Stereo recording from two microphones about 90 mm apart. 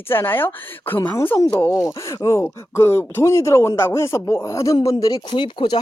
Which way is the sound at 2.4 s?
25° left (ahead or behind).